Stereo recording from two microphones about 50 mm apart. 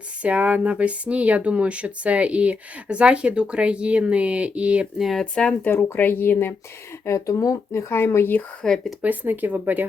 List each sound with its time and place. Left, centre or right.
0.2 s speech: right
5.2 s speech: left
5.6 s speech: left
7.0 s speech: left
8.6 s speech: centre
9.0 s speech: right